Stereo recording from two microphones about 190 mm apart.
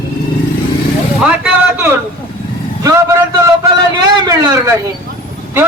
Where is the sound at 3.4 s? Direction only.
20° right (ahead or behind).